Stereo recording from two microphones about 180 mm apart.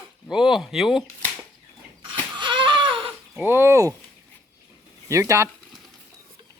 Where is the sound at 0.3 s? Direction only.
5° right (ahead or behind).